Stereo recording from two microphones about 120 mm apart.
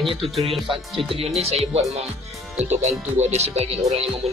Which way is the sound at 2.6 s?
65° right (ahead or behind).